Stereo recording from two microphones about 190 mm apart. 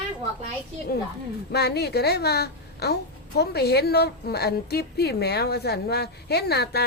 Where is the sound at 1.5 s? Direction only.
60° left (ahead or behind).